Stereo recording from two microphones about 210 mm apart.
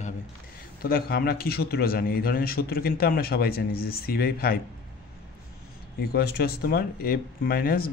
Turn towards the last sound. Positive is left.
turn(degrees=45)  # may be behind; listen again after turning